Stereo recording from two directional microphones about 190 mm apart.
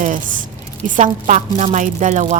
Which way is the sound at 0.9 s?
40° right (ahead or behind).